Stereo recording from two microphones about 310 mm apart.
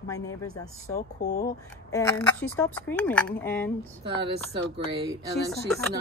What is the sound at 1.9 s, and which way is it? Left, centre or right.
Speech, centre.